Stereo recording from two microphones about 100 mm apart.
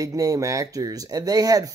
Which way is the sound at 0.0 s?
35° right (ahead or behind).